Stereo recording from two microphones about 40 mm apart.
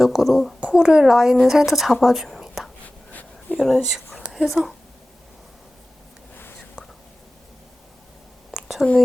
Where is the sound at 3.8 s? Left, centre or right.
Centre.